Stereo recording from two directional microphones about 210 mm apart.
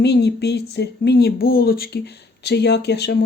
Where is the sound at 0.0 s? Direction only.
55° left (ahead or behind).